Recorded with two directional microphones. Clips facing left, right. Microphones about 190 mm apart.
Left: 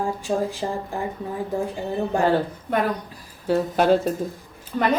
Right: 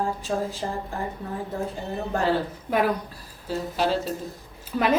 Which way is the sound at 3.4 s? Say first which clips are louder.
Left 6 dB; 60° left (ahead or behind).